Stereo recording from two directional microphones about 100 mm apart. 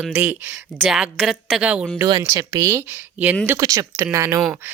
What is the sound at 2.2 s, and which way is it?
A woman's voice, 35° right (ahead or behind).